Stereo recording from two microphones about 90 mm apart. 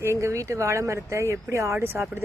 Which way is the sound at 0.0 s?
30° right (ahead or behind).